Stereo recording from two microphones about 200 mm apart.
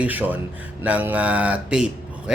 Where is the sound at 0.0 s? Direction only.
10° right (ahead or behind).